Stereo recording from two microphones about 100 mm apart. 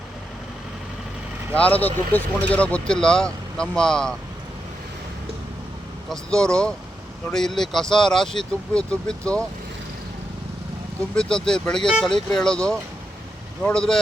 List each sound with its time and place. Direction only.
1.5 s speech: 15° left (ahead or behind)
6.1 s speech: 5° left (ahead or behind)
11.1 s speech: 5° left (ahead or behind)